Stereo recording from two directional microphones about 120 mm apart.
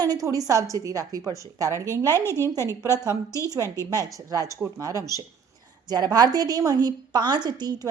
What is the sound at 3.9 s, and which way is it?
A woman's voice, 30° right (ahead or behind).